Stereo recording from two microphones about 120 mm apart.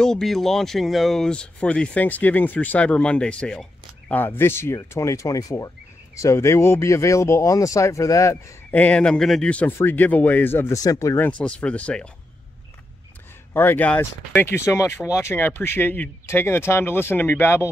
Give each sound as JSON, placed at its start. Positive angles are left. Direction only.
{"t": 0.0, "sound": "speech", "side_deg": 5}
{"t": 8.7, "sound": "speech", "side_deg": 10}
{"t": 13.5, "sound": "speech", "side_deg": 15}